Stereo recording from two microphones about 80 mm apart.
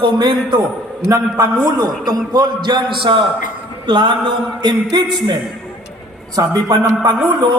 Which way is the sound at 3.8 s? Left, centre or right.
Right.